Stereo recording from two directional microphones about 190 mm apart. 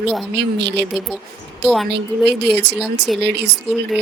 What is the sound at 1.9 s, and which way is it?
A woman's voice, 60° right (ahead or behind).